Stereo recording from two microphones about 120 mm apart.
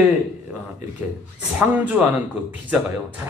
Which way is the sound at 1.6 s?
15° right (ahead or behind).